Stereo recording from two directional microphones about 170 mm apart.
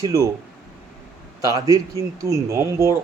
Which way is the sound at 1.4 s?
20° right (ahead or behind).